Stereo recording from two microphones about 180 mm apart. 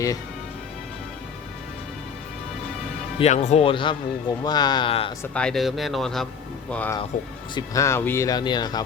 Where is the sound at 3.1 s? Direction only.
40° left (ahead or behind).